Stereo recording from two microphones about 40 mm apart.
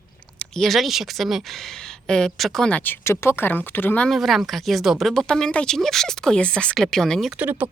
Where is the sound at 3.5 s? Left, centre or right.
Left.